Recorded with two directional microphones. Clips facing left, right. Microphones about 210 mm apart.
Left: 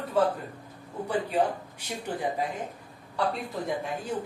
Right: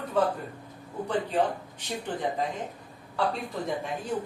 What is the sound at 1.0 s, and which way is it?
Speech, 10° left (ahead or behind).